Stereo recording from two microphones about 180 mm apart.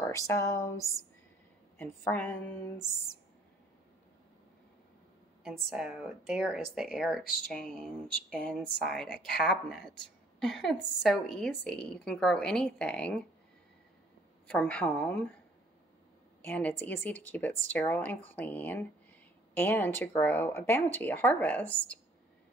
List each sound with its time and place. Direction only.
0.3 s speech: 15° left (ahead or behind)
5.4 s a woman's voice: centre (ahead or behind)
14.5 s speech: 5° left (ahead or behind)
16.4 s speech: 10° left (ahead or behind)